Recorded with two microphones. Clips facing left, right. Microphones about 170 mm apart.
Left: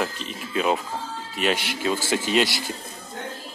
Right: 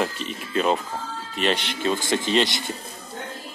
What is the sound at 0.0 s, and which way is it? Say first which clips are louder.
A man's voice: right 2 dB; centre (ahead or behind).